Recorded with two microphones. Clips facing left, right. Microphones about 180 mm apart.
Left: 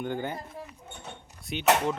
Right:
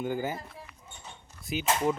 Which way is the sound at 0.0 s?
5° right (ahead or behind).